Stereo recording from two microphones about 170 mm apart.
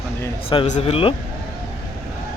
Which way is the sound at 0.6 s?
40° left (ahead or behind).